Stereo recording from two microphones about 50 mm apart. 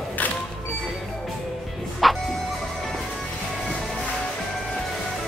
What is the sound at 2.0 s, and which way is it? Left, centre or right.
Music, centre.